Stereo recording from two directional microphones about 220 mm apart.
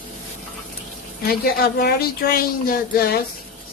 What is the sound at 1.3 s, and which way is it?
A woman's voice, 45° left (ahead or behind).